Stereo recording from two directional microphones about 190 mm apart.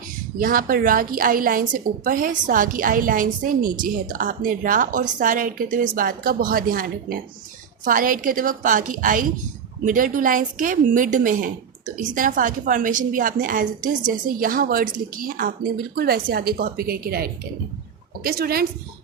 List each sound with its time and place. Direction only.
0.3 s a woman's voice: 45° right (ahead or behind)